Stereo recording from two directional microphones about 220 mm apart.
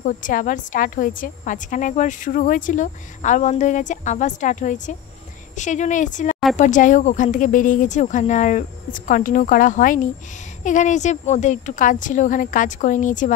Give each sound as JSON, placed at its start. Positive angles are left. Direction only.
{"t": 0.0, "sound": "a woman's voice", "side_deg": 35}